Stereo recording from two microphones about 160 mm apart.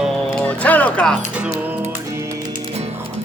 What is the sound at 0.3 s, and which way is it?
Music, 10° left (ahead or behind).